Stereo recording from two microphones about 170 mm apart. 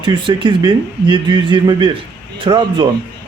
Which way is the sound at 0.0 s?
30° right (ahead or behind).